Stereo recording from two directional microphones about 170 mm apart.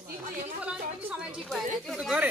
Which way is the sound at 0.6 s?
5° right (ahead or behind).